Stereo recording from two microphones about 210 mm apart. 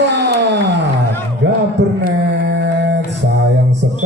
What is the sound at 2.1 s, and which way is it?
Mantra, 55° right (ahead or behind).